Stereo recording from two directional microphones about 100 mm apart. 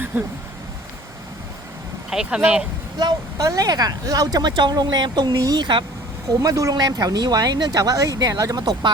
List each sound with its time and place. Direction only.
0.1 s speech: 15° right (ahead or behind)
2.0 s speech: 5° right (ahead or behind)
3.0 s speech: 40° right (ahead or behind)
6.4 s speech: 35° right (ahead or behind)